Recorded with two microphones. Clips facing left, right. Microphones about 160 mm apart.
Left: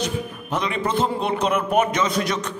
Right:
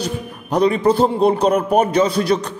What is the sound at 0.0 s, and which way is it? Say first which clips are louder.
A man's voice: right 1 dB; 35° right (ahead or behind).